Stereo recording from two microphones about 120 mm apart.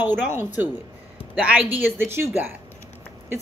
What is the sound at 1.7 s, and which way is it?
Speech, 20° right (ahead or behind).